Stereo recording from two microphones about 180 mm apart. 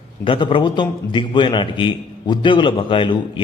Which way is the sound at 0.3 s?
25° left (ahead or behind).